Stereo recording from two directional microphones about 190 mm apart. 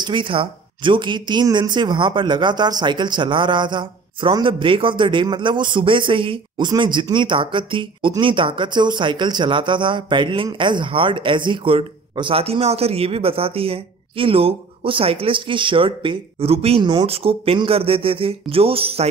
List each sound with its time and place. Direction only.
0.0 s speech: 25° right (ahead or behind)